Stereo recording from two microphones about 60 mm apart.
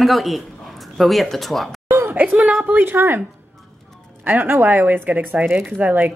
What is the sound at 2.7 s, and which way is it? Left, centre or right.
Speech, right.